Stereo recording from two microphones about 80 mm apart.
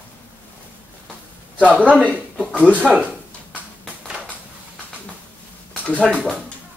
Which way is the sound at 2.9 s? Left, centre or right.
Centre.